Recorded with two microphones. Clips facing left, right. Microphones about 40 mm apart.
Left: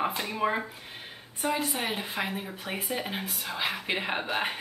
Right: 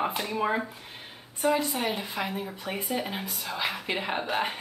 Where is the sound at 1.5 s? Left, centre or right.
Left; by 3.2 s centre.